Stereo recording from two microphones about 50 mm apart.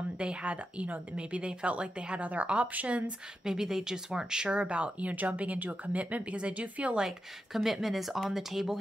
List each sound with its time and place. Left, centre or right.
0.2 s speech: right
3.4 s speech: centre; by 7.0 s right
7.0 s speech: centre